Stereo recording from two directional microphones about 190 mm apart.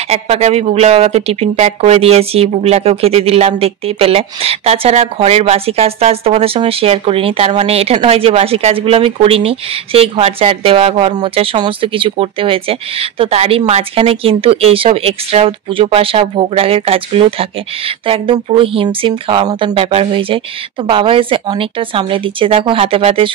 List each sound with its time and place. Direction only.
0.1 s speech: 35° right (ahead or behind)